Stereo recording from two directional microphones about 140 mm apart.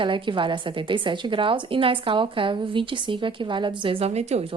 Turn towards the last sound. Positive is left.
turn(degrees=-50)  # may be behind; listen again after turning